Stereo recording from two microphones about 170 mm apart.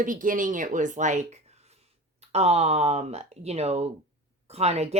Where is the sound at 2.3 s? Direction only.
40° right (ahead or behind).